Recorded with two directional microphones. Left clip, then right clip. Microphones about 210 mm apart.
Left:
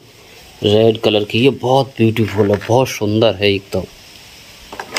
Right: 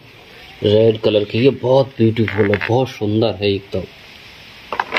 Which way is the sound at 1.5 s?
30° left (ahead or behind).